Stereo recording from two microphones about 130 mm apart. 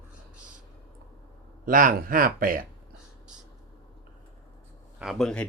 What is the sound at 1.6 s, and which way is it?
Speech, 90° right.